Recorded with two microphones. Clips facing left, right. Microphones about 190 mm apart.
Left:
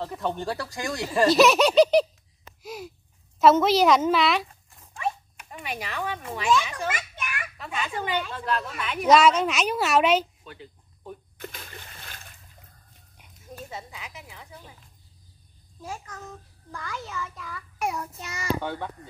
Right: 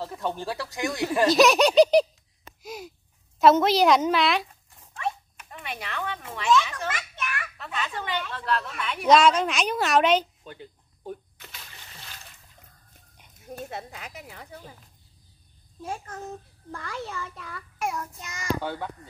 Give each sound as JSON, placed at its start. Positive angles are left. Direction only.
{"t": 0.0, "sound": "speech", "side_deg": 0}
{"t": 2.6, "sound": "a sound", "side_deg": 0}
{"t": 3.3, "sound": "speech", "side_deg": 0}
{"t": 4.9, "sound": "zipper", "side_deg": 10}
{"t": 6.3, "sound": "a child's voice", "side_deg": 10}
{"t": 11.3, "sound": "splash", "side_deg": 50}
{"t": 13.6, "sound": "speech", "side_deg": -65}
{"t": 14.2, "sound": "speech", "side_deg": -50}
{"t": 17.8, "sound": "child singing", "side_deg": 10}
{"t": 18.6, "sound": "speech", "side_deg": -5}